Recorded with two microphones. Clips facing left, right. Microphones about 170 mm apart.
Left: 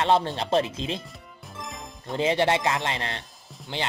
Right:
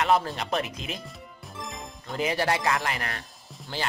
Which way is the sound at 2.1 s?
25° left (ahead or behind).